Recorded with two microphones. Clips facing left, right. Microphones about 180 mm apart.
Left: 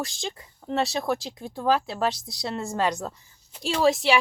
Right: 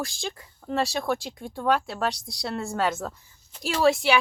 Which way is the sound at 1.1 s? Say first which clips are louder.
Even; centre (ahead or behind).